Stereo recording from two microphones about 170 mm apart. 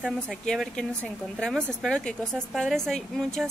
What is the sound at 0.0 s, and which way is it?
A woman's voice, centre (ahead or behind).